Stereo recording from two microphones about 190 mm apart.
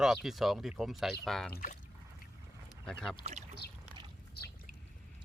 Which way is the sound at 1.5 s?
45° left (ahead or behind).